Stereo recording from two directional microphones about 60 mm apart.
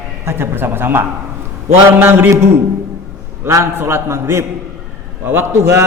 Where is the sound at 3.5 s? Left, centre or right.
Right.